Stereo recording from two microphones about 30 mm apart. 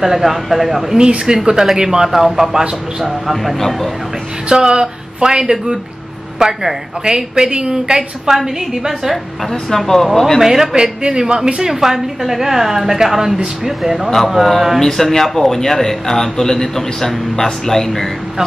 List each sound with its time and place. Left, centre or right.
0.0 s speech: centre
0.9 s a woman's voice: right; by 3.5 s centre
3.5 s a man's voice: centre
4.5 s a woman's voice: right
8.3 s a woman's voice: centre
9.5 s a man's voice: centre
10.4 s a woman's voice: centre
10.7 s speech: right
11.7 s a woman's voice: centre
14.8 s a man's voice: centre